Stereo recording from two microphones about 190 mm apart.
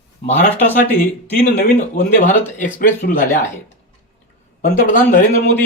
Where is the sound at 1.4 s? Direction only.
55° left (ahead or behind).